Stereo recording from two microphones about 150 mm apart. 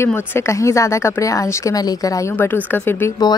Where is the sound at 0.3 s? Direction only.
20° left (ahead or behind).